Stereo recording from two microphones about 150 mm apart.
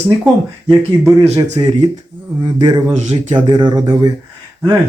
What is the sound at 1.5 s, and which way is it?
Speech, 30° right (ahead or behind).